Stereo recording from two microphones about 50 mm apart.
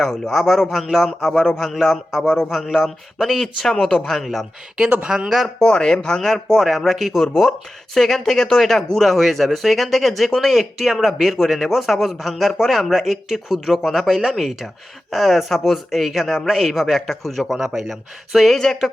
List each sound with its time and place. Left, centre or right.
0.0 s speech: centre
5.0 s speech: centre
5.5 s speech: centre
17.7 s speech: centre